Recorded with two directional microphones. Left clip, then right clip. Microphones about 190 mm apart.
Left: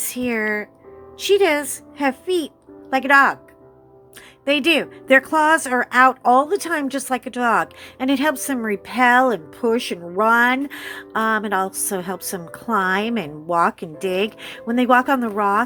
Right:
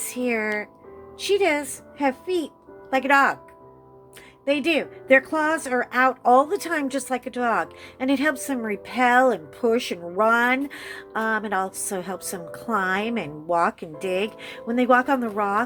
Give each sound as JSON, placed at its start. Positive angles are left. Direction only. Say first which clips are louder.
{"t": 0.1, "sound": "speech", "louder": "left 2 dB", "side_deg": 20}
{"t": 4.4, "sound": "speech", "louder": "left 5 dB", "side_deg": 25}